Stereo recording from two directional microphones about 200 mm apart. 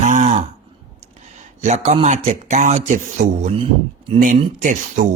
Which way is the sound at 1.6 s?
35° right (ahead or behind).